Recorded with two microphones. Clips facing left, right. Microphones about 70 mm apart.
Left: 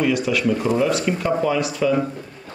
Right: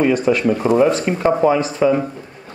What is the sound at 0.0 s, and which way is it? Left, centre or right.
Speech, right.